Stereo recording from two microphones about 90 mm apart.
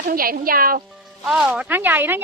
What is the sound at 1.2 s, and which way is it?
Speech, 5° right (ahead or behind).